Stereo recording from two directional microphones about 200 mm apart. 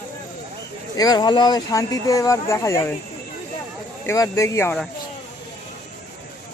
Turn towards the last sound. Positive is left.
turn(degrees=15)  # may be behind; listen again after turning